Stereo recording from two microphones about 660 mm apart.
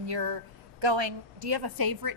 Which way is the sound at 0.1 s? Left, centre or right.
Right.